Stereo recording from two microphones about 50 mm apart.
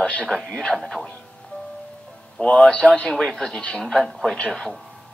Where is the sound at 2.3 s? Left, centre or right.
Left.